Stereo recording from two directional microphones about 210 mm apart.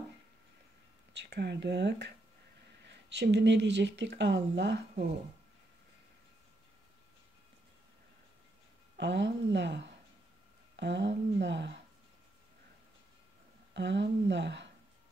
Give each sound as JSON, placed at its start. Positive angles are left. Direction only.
{"t": 1.1, "sound": "speech", "side_deg": -55}
{"t": 8.9, "sound": "speech", "side_deg": -55}
{"t": 13.7, "sound": "speech", "side_deg": -55}